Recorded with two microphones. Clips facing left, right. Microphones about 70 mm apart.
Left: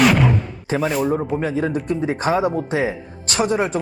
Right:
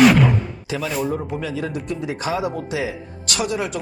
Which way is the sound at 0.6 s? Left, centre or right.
Left.